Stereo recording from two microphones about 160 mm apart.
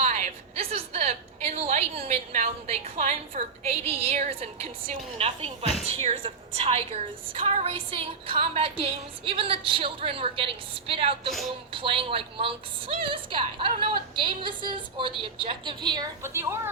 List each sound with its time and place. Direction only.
0.0 s a woman's voice: 45° right (ahead or behind); by 16.6 s 15° right (ahead or behind)